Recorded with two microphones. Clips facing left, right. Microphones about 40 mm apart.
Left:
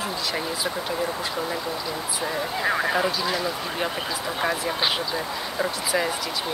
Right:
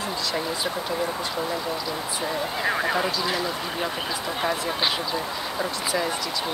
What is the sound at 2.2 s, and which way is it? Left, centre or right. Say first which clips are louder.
Speech: left 1 dB; centre.